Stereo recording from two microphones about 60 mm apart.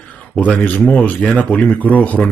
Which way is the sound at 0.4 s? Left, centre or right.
Left.